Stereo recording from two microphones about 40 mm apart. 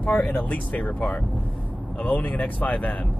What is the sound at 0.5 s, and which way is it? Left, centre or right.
Speech, left.